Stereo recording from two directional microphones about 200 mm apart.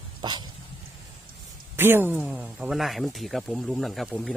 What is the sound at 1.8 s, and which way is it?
Speech, 10° right (ahead or behind).